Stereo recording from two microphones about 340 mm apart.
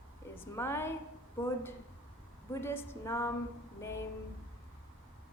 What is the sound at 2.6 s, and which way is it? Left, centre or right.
Female singing, centre.